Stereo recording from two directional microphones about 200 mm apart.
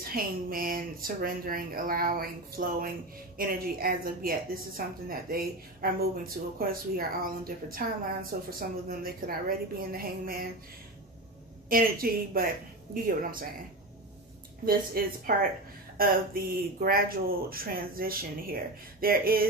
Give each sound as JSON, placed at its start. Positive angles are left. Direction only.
{"t": 0.1, "sound": "a woman's voice", "side_deg": -45}
{"t": 11.7, "sound": "a woman's voice", "side_deg": -45}
{"t": 14.6, "sound": "a woman's voice", "side_deg": -45}